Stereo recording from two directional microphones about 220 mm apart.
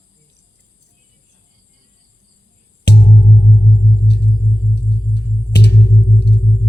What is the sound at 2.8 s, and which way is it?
Music, 50° left (ahead or behind).